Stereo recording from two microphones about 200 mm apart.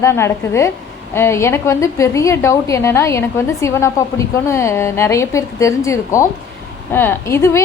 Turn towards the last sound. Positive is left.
turn(degrees=15)  # may be behind; listen again after turning